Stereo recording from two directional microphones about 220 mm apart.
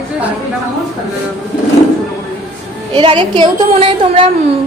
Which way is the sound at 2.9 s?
20° right (ahead or behind).